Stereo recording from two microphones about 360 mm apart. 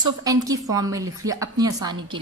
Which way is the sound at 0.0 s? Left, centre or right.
Centre.